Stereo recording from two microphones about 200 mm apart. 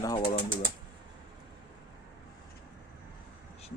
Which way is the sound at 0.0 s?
20° left (ahead or behind).